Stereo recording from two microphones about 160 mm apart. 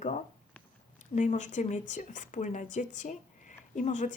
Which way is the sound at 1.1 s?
50° left (ahead or behind).